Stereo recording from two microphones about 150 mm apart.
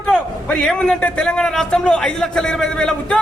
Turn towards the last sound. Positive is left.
turn(degrees=5)  # may be behind; listen again after turning